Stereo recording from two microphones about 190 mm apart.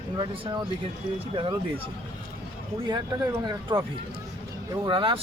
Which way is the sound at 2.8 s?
20° right (ahead or behind).